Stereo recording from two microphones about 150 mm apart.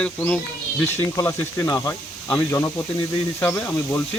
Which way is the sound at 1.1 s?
20° left (ahead or behind).